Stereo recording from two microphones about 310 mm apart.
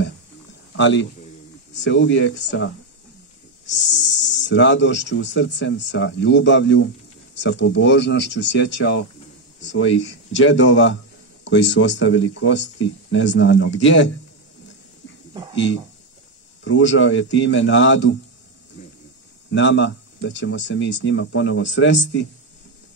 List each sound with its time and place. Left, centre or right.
0.7 s a man's voice: left
3.9 s speech: left
16.6 s speech: left
19.5 s speech: left